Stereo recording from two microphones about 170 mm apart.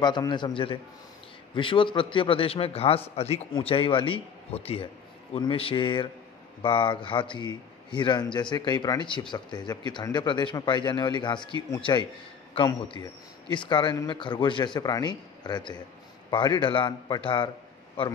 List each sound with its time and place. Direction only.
0.0 s a man's voice: 25° left (ahead or behind)